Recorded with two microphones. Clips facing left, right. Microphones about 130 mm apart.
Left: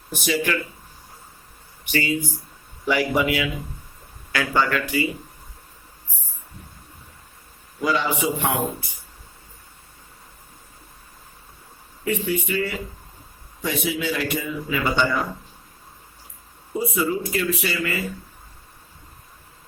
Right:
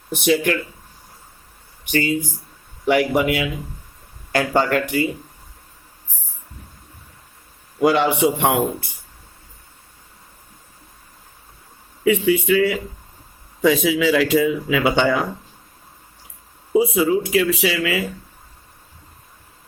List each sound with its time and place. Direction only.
0.1 s speech: 60° right (ahead or behind)
1.8 s speech: 50° right (ahead or behind)
7.8 s a man's voice: 70° right (ahead or behind)
12.0 s a man's voice: 90° right
16.7 s a man's voice: 90° right